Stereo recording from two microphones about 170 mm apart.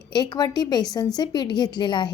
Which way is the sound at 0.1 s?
25° left (ahead or behind).